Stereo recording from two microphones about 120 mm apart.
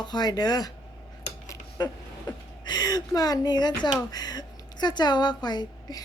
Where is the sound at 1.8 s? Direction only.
35° left (ahead or behind).